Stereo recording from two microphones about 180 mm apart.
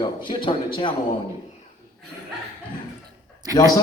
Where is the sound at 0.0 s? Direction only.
25° left (ahead or behind).